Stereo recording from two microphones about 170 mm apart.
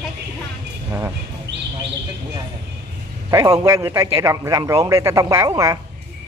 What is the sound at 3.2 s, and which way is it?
A man's voice, 20° right (ahead or behind).